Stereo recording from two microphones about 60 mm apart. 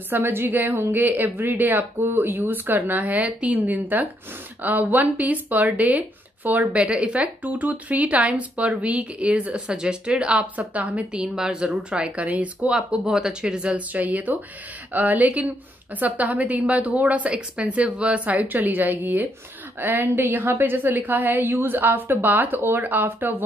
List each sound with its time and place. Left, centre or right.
0.1 s a woman's voice: right